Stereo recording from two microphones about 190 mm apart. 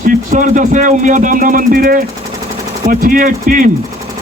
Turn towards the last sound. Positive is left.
turn(degrees=-45)  # may be behind; listen again after turning